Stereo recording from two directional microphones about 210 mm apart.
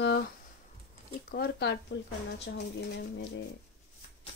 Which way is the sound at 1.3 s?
50° left (ahead or behind).